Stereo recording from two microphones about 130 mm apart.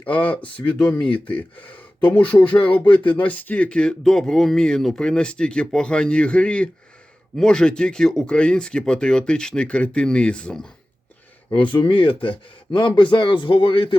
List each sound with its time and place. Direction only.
0.0 s speech: 10° left (ahead or behind)
11.5 s speech: 40° left (ahead or behind)